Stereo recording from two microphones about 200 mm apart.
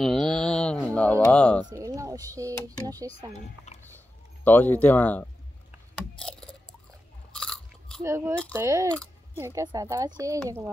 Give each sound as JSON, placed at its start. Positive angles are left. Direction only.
{"t": 0.0, "sound": "a sound", "side_deg": 0}
{"t": 1.7, "sound": "speech", "side_deg": -15}
{"t": 4.5, "sound": "speech", "side_deg": 10}
{"t": 5.9, "sound": "a sound", "side_deg": 5}
{"t": 7.3, "sound": "chewing", "side_deg": 5}
{"t": 8.0, "sound": "a woman's voice", "side_deg": -15}